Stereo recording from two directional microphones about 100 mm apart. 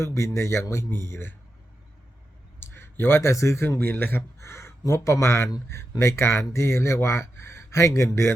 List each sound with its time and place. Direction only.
0.0 s speech: 30° left (ahead or behind)
2.6 s speech: 25° left (ahead or behind)